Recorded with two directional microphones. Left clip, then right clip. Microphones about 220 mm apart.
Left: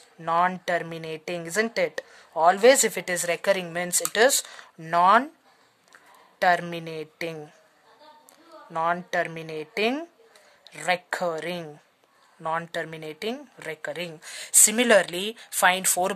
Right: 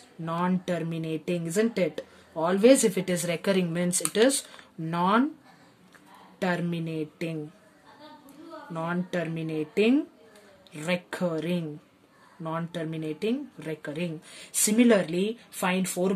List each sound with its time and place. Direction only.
0.2 s speech: 25° left (ahead or behind)
6.4 s speech: 25° left (ahead or behind)
8.7 s speech: 25° left (ahead or behind)